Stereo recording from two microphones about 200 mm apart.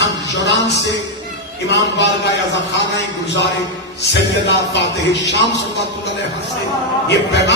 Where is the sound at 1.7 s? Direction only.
60° left (ahead or behind).